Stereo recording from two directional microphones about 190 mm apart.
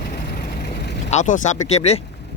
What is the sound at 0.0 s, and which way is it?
Vehicle, 55° left (ahead or behind).